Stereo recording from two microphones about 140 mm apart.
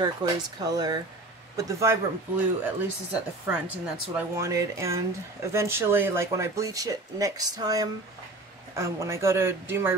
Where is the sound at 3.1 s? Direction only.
10° right (ahead or behind).